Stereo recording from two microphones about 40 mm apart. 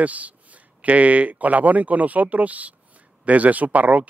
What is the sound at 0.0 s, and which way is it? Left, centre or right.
Speech, right.